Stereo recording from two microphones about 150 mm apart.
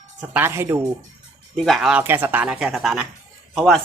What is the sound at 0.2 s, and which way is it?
Speech, 15° right (ahead or behind).